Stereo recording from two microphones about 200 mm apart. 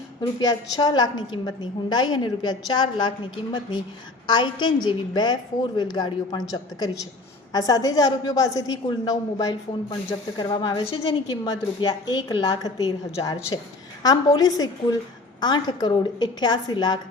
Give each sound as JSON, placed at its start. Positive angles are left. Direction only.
{"t": 0.2, "sound": "a woman's voice", "side_deg": 20}
{"t": 4.3, "sound": "a woman's voice", "side_deg": 20}
{"t": 7.5, "sound": "a woman's voice", "side_deg": 20}